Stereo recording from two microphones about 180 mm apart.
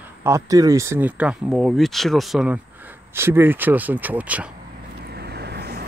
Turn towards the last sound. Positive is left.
turn(degrees=-65)  # may be behind; listen again after turning